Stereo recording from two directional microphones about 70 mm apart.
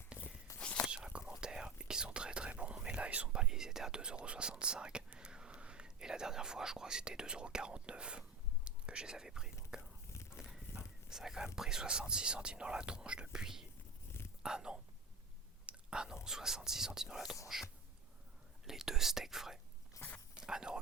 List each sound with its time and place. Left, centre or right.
0.9 s whispering: centre
8.6 s speech: centre
9.7 s whispering: centre
10.2 s speech: centre
15.6 s whispering: centre
16.2 s speech: centre
18.6 s whispering: centre
20.0 s a sound: left
20.3 s a sound: centre